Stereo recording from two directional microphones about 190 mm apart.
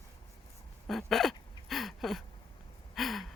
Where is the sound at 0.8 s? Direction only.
Centre (ahead or behind).